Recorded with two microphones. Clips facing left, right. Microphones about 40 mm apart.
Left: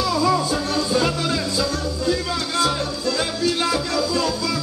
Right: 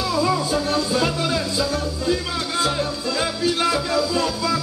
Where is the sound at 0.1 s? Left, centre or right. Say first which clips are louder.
Right 1 dB; centre.